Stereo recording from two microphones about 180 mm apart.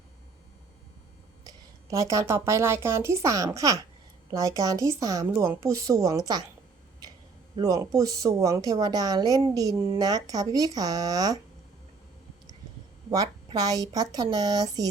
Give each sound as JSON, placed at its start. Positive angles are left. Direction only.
{"t": 1.5, "sound": "a woman's voice", "side_deg": -15}
{"t": 7.5, "sound": "a woman's voice", "side_deg": -20}
{"t": 13.1, "sound": "a woman's voice", "side_deg": -20}